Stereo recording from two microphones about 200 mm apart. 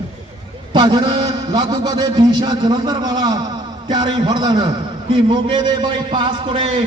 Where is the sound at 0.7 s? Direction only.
25° right (ahead or behind).